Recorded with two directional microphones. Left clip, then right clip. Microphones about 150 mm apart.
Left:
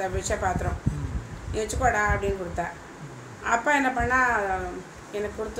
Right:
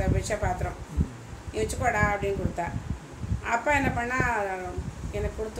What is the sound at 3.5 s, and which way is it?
Speech, centre (ahead or behind).